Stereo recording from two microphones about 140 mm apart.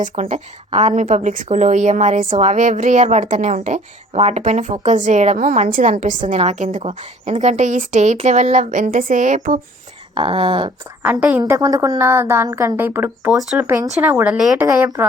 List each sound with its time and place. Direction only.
0.0 s speech: 60° right (ahead or behind)
5.6 s speech: 70° right (ahead or behind)
10.2 s a sound: 40° right (ahead or behind)
11.0 s a woman's voice: 10° right (ahead or behind)
11.5 s a woman's voice: 25° right (ahead or behind)
13.3 s a woman's voice: centre (ahead or behind)